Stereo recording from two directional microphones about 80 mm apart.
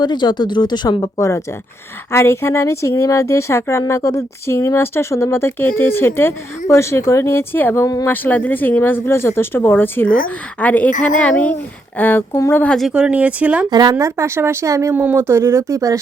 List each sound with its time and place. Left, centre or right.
0.0 s speech: left
2.1 s a woman's voice: left
12.9 s speech: centre
13.7 s a woman's voice: right
14.0 s speech: right
14.9 s speech: right